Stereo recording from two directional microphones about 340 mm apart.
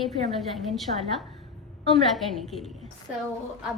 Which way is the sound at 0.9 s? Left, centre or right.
Right.